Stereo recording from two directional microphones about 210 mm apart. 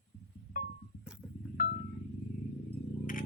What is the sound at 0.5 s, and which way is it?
Music, 40° left (ahead or behind).